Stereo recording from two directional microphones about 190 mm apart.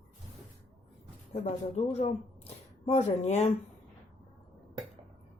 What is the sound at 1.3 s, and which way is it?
Speech, 35° left (ahead or behind).